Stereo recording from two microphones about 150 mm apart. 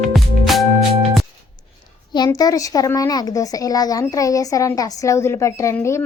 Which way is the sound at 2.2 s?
25° left (ahead or behind).